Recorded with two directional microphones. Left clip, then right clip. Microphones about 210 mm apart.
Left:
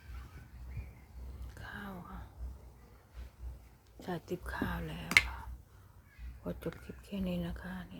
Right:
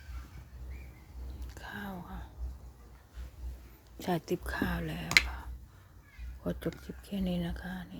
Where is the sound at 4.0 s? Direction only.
30° right (ahead or behind).